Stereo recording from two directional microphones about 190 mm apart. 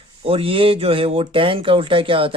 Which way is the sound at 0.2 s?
30° right (ahead or behind).